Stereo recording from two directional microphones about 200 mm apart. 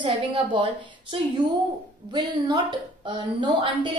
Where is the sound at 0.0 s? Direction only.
25° right (ahead or behind).